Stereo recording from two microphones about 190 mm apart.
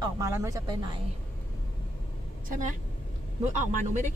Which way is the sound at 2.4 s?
40° right (ahead or behind).